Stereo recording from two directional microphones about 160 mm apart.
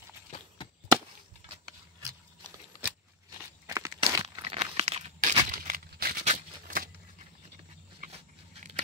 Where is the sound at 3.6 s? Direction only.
20° right (ahead or behind).